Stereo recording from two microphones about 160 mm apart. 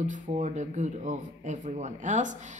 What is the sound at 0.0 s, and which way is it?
A woman's voice, 50° right (ahead or behind).